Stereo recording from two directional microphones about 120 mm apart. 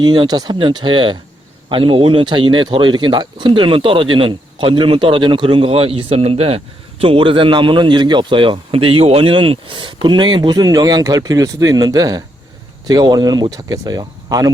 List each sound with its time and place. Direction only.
0.0 s a man's voice: 40° right (ahead or behind)